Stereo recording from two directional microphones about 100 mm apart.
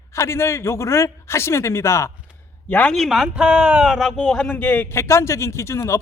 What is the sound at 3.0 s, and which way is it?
Speech, centre (ahead or behind).